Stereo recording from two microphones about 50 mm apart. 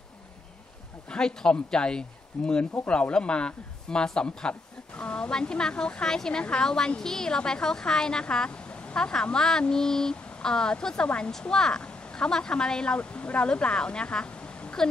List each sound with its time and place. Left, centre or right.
1.0 s a woman's voice: centre